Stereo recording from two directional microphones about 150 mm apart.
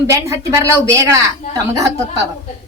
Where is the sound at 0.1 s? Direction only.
20° right (ahead or behind).